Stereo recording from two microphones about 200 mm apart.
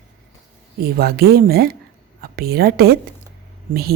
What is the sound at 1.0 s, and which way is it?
A woman's voice, 50° right (ahead or behind).